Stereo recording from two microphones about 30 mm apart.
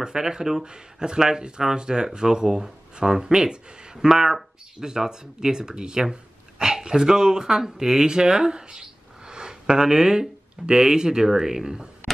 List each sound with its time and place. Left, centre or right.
0.0 s speech: right
4.1 s speech: centre
9.3 s a sound: right
10.7 s speech: right